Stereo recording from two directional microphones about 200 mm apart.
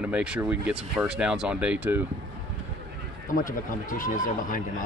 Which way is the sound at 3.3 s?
40° left (ahead or behind).